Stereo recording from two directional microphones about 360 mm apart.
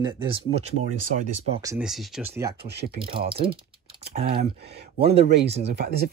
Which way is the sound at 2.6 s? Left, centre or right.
Right.